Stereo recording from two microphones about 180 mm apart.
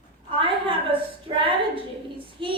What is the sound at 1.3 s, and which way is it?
Speech, 30° right (ahead or behind).